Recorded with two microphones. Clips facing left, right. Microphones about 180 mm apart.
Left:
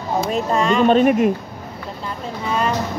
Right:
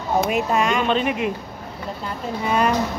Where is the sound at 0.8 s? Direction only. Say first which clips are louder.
Left 8 dB; 45° left (ahead or behind).